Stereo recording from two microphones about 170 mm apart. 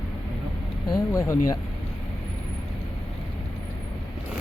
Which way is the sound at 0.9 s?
20° left (ahead or behind).